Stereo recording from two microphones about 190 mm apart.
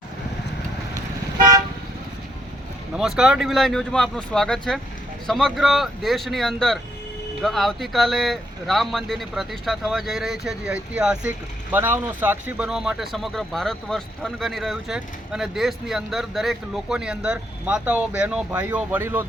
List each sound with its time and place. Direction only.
1.4 s toot: 20° right (ahead or behind)
2.9 s speech: 5° right (ahead or behind)